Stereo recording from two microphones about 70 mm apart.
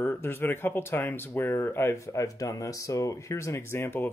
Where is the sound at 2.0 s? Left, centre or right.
Left.